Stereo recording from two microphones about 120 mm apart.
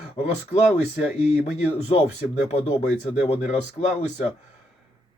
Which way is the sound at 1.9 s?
60° left (ahead or behind).